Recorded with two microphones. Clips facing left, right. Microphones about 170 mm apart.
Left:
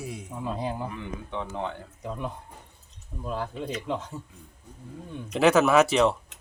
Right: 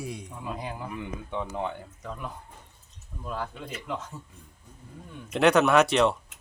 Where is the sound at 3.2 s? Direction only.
25° left (ahead or behind).